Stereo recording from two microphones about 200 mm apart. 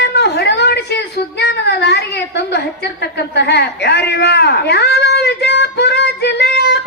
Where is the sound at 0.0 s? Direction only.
55° left (ahead or behind).